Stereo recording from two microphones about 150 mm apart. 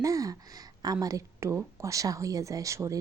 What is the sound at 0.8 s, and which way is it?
A woman's voice, 25° right (ahead or behind).